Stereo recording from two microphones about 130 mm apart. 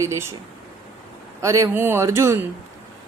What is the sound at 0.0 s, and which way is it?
Speech, 20° right (ahead or behind).